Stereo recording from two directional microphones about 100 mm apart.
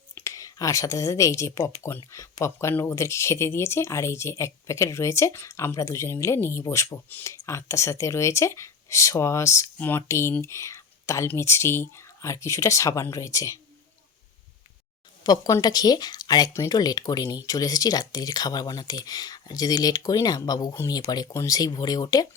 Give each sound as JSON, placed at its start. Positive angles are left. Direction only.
{"t": 0.3, "sound": "speech", "side_deg": 35}
{"t": 15.2, "sound": "speech", "side_deg": 40}